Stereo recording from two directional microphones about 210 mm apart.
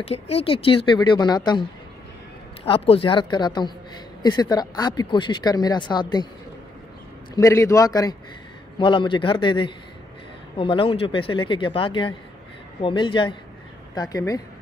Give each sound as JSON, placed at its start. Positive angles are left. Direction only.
{"t": 0.0, "sound": "a woman's voice", "side_deg": 30}
{"t": 2.6, "sound": "a woman's voice", "side_deg": 25}
{"t": 7.3, "sound": "a man's voice", "side_deg": 15}